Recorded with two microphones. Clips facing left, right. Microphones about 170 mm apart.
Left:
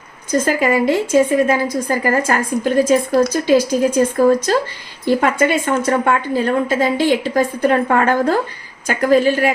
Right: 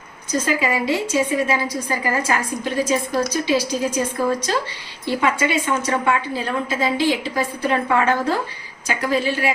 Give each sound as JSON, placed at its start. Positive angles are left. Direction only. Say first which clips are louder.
{"t": 0.3, "sound": "a woman's voice", "louder": "left 5 dB", "side_deg": 50}